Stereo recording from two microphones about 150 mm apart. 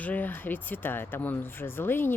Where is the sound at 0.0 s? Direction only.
10° left (ahead or behind).